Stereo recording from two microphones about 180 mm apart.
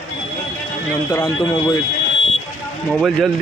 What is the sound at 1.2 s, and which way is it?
Speech, 25° left (ahead or behind).